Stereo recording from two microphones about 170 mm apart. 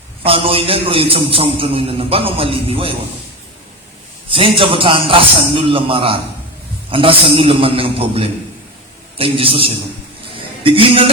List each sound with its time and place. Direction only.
0.2 s a man's voice: 35° right (ahead or behind)
4.3 s a man's voice: 30° right (ahead or behind)